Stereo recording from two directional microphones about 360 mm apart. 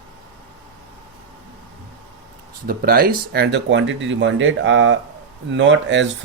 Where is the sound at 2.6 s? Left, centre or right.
Right.